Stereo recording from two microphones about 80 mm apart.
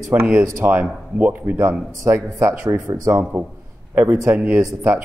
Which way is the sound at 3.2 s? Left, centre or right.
Centre.